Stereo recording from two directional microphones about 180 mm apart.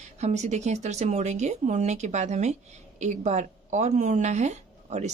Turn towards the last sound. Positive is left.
turn(degrees=-40)  # may be behind; listen again after turning